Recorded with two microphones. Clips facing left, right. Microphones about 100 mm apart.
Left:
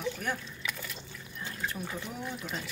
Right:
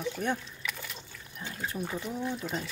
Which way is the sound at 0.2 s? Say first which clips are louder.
Right 6 dB; 35° right (ahead or behind).